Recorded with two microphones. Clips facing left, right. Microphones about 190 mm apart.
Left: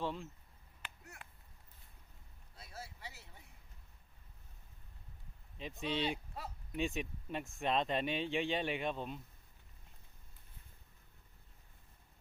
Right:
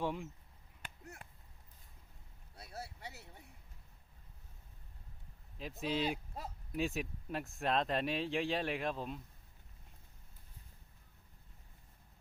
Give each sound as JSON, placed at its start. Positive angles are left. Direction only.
{"t": 0.0, "sound": "speech", "side_deg": -15}
{"t": 2.6, "sound": "a sound", "side_deg": -65}
{"t": 5.5, "sound": "speech", "side_deg": 0}